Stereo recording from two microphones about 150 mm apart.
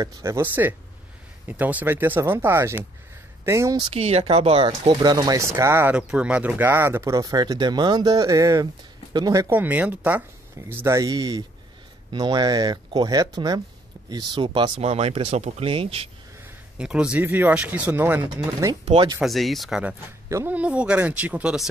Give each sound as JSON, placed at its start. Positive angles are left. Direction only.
{"t": 0.0, "sound": "speech", "side_deg": -20}
{"t": 3.9, "sound": "speech", "side_deg": -45}
{"t": 16.7, "sound": "speech", "side_deg": -5}
{"t": 19.2, "sound": "speech", "side_deg": 0}